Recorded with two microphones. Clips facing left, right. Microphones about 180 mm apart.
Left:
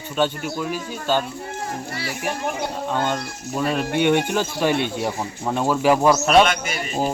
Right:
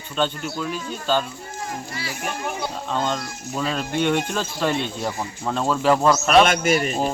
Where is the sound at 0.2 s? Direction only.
10° left (ahead or behind).